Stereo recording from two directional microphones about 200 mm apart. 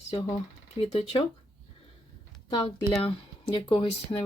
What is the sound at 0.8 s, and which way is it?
Speech, 30° left (ahead or behind).